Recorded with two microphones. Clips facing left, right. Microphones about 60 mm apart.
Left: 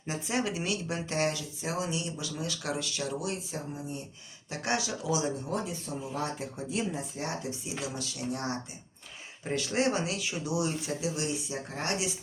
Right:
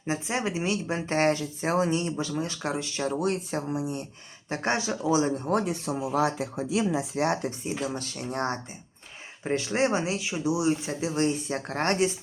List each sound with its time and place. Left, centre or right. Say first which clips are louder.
0.1 s speech: right 3 dB; right
3.2 s speech: right 8 dB; right
3.7 s speech: right 8 dB; right
4.4 s speech: right 4 dB; right
5.5 s speech: right 7 dB; right
7.6 s speech: right 5 dB; right
9.4 s speech: right 3 dB; right
11.0 s speech: right 9 dB; right
11.5 s speech: right 7 dB; right